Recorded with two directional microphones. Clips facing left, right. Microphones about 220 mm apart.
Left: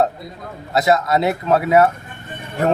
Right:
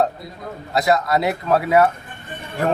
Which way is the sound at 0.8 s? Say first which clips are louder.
Left 2 dB; 20° left (ahead or behind).